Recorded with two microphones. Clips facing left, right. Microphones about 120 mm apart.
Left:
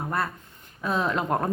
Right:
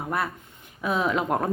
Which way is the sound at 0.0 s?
5° right (ahead or behind).